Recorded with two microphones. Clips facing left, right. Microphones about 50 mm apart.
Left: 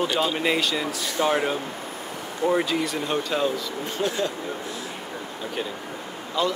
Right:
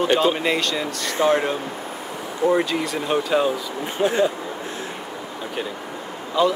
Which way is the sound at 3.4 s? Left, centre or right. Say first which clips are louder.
Right 3 dB; right.